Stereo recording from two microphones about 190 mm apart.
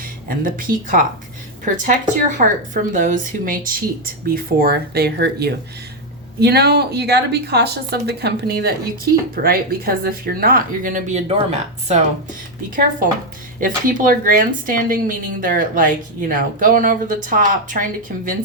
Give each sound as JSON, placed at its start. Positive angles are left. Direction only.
{"t": 0.3, "sound": "speech", "side_deg": -45}
{"t": 13.6, "sound": "speech", "side_deg": -45}